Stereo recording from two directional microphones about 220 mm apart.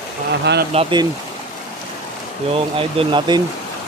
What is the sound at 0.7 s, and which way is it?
Speech, 25° right (ahead or behind).